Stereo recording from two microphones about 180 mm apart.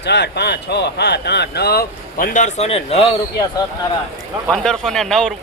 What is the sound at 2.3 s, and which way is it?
Speech, 40° left (ahead or behind).